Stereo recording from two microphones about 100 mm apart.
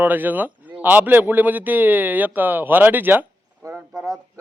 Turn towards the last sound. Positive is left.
turn(degrees=-5)  # may be behind; listen again after turning